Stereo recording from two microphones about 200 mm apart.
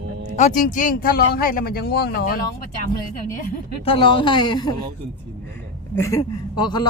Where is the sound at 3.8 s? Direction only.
25° left (ahead or behind).